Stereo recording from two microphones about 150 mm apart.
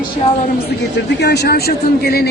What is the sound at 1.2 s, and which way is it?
A man's voice, 90° left.